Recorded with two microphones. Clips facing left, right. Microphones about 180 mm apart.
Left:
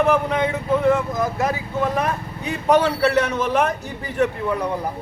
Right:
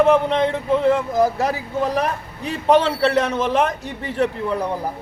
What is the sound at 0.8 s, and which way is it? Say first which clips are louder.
Speech: right 3 dB; 30° right (ahead or behind).